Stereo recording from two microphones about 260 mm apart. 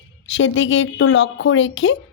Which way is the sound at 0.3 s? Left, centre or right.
Left.